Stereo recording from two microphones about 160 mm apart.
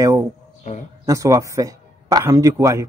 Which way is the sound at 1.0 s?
20° right (ahead or behind).